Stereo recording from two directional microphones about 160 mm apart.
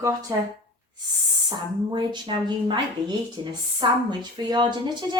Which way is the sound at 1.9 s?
30° right (ahead or behind).